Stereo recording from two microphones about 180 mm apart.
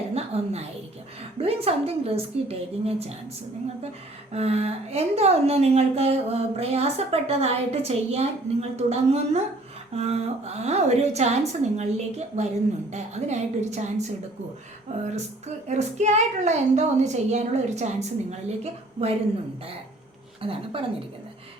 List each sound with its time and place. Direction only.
0.1 s a sound: 35° right (ahead or behind)
1.4 s a woman's voice: 35° right (ahead or behind)
4.3 s a woman's voice: 35° right (ahead or behind)
20.4 s a woman's voice: 30° right (ahead or behind)